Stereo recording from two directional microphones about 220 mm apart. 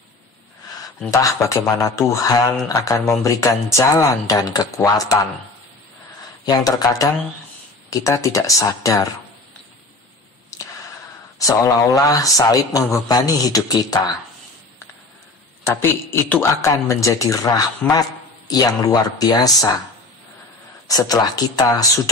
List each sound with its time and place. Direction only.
1.1 s speech: 15° left (ahead or behind)
6.4 s speech: 20° left (ahead or behind)
10.5 s a sound: 15° left (ahead or behind)
11.3 s speech: 15° left (ahead or behind)
15.6 s speech: 10° left (ahead or behind)
20.9 s speech: 15° left (ahead or behind)